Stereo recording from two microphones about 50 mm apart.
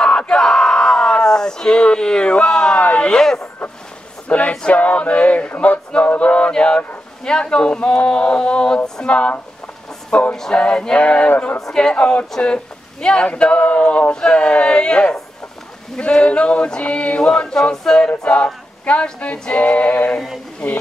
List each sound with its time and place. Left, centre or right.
0.3 s a sound: centre
2.8 s a sound: left
3.2 s a sound: centre
4.3 s male singing: left
5.9 s a sound: left
7.2 s a capella: centre
10.5 s music: centre
11.0 s a capella: left
12.3 s music: centre
13.0 s a capella: centre
17.3 s a capella: centre; by 20.2 s left
20.6 s a capella: centre